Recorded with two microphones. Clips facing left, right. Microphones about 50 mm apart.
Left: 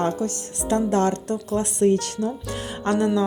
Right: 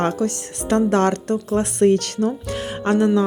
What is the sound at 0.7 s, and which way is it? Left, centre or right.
Speech, right.